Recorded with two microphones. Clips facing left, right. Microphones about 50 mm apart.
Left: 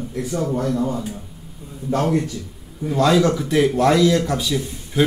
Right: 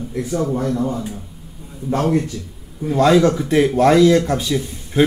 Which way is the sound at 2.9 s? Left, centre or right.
Right.